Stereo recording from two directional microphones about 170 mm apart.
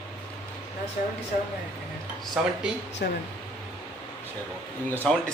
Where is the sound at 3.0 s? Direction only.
65° left (ahead or behind).